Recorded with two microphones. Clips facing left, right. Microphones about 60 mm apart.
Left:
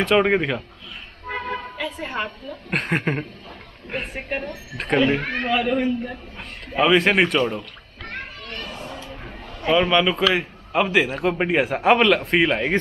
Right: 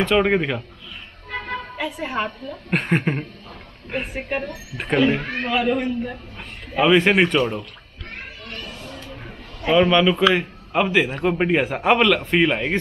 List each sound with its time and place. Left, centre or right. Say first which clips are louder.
0.0 s a man's voice: even; centre
1.3 s music: left 1 dB; centre
1.8 s a man's voice: right 6 dB; centre
8.1 s children playing: left 2 dB; left
8.7 s a sound: left 2 dB; left
9.7 s a man's voice: right 2 dB; centre